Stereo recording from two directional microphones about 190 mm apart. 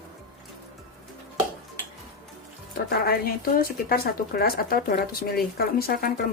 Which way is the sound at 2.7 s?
55° left (ahead or behind).